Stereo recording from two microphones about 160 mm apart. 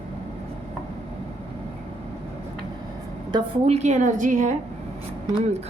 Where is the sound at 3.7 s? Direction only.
50° right (ahead or behind).